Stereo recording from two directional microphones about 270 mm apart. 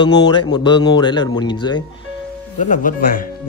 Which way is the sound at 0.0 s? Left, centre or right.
Centre.